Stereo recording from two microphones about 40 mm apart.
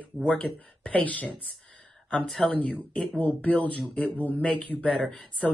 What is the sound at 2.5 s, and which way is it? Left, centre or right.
Speech, left.